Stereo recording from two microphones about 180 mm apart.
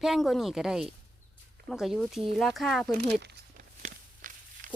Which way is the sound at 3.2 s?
60° right (ahead or behind).